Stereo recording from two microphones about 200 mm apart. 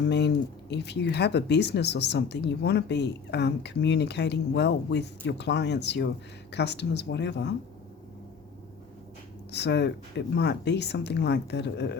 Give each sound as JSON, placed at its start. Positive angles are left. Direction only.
{"t": 0.0, "sound": "speech", "side_deg": 60}
{"t": 9.5, "sound": "speech", "side_deg": 60}